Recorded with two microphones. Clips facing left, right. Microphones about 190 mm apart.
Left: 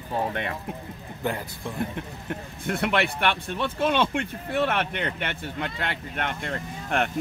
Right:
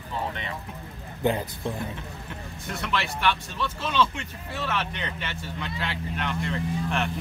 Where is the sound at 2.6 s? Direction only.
55° left (ahead or behind).